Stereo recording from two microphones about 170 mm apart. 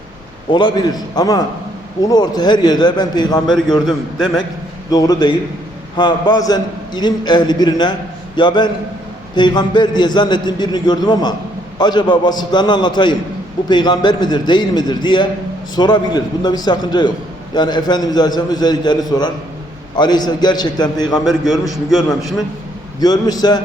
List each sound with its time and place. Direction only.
0.5 s a man's voice: 25° left (ahead or behind)
3.7 s a man's voice: centre (ahead or behind)
4.9 s a man's voice: 20° left (ahead or behind)
21.2 s a man's voice: centre (ahead or behind)
23.0 s a man's voice: 25° left (ahead or behind)